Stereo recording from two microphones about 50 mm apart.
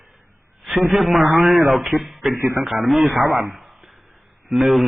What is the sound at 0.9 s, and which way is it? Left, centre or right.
Speech, centre.